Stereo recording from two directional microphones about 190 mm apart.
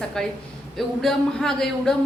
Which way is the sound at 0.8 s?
Centre (ahead or behind).